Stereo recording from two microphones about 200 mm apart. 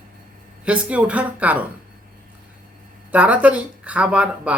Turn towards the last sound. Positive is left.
turn(degrees=-5)  # may be behind; listen again after turning